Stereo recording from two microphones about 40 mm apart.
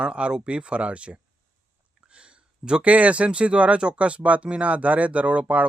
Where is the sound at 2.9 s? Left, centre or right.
Right.